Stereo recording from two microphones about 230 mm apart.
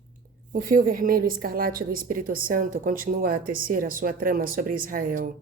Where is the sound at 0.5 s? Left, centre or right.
Right.